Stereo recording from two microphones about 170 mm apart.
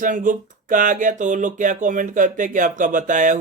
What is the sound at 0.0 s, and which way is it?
Speech, 50° right (ahead or behind).